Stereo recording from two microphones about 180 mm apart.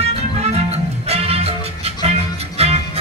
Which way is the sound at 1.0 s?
35° right (ahead or behind).